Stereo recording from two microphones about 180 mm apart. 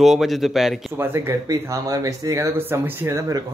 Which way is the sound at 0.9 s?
15° right (ahead or behind).